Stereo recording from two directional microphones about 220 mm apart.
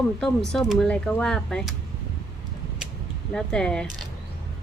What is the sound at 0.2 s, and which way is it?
A woman's voice, centre (ahead or behind).